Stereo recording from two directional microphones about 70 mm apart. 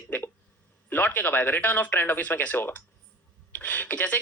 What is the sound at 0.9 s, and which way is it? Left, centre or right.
Speech, left.